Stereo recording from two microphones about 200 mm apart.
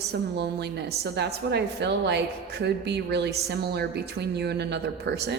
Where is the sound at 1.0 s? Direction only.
55° right (ahead or behind).